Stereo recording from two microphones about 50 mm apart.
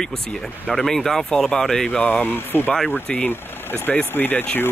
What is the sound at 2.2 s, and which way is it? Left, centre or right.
Speech, left.